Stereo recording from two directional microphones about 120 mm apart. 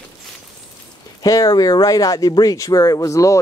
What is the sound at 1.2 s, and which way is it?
Speech, 30° left (ahead or behind).